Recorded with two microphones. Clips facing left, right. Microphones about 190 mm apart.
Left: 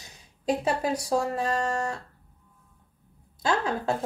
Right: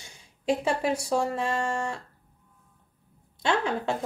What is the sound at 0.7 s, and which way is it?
Speech, 25° right (ahead or behind).